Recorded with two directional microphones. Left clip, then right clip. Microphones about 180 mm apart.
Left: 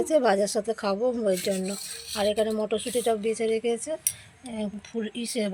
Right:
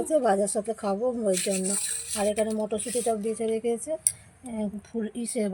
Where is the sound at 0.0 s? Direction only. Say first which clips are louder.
Left 1 dB; 5° right (ahead or behind).